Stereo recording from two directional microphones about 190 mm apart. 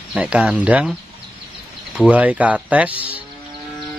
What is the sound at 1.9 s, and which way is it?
Speech, 5° right (ahead or behind).